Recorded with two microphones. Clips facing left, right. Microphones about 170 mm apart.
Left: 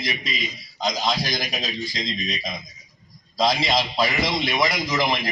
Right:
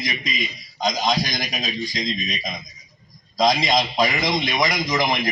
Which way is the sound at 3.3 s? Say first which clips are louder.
Right 2 dB; 15° right (ahead or behind).